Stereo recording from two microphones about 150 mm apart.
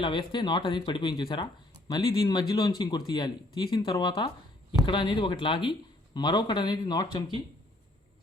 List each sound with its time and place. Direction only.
0.0 s speech: 30° left (ahead or behind)